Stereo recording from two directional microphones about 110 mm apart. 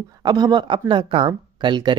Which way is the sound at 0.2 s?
40° right (ahead or behind).